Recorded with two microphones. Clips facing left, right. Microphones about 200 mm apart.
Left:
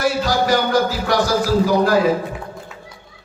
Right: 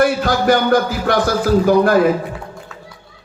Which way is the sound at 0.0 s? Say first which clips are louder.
Right 4 dB; 55° right (ahead or behind).